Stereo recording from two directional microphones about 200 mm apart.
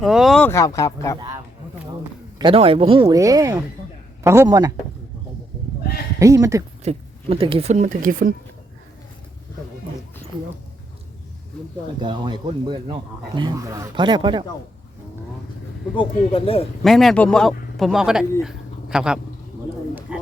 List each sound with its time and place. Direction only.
0.0 s speech: centre (ahead or behind); by 1.2 s 15° left (ahead or behind)
2.4 s a man's voice: 25° right (ahead or behind)
6.1 s a man's voice: 15° right (ahead or behind)
6.8 s speech: 30° right (ahead or behind)
12.0 s speech: 20° right (ahead or behind)
16.0 s speech: 30° left (ahead or behind)
16.8 s a man's voice: centre (ahead or behind)
20.1 s bird: 5° right (ahead or behind)